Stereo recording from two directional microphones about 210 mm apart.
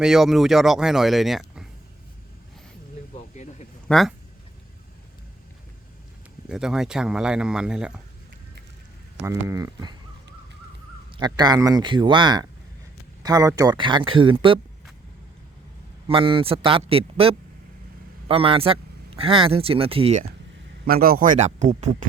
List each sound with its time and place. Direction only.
0.0 s speech: centre (ahead or behind)
3.3 s a sound: 35° left (ahead or behind)
3.8 s speech: centre (ahead or behind)
6.5 s speech: 5° right (ahead or behind)
9.5 s speech: 15° right (ahead or behind)
11.2 s speech: 20° right (ahead or behind)
16.0 s speech: 25° right (ahead or behind)
20.8 s a man's voice: 45° right (ahead or behind)